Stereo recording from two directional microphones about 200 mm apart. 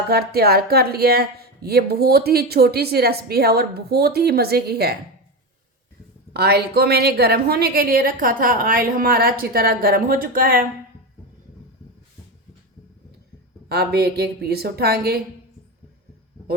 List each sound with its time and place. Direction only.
0.1 s speech: 50° right (ahead or behind)
6.3 s speech: 50° right (ahead or behind)
13.7 s speech: 55° right (ahead or behind)